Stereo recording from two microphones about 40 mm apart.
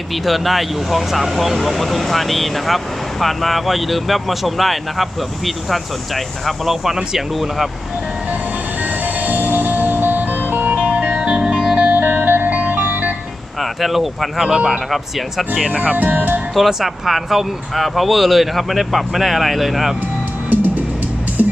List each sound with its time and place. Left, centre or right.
0.3 s speech: centre
8.8 s music: right
10.8 s music: right
11.2 s music: centre
11.9 s music: right
13.6 s speech: centre
15.7 s speech: right
16.0 s music: right
16.6 s speech: centre
20.5 s music: right